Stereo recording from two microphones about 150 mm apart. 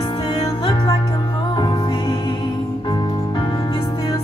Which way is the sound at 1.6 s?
30° left (ahead or behind).